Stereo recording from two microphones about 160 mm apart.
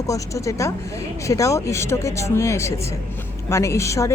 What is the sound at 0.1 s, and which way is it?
Speech, 20° left (ahead or behind).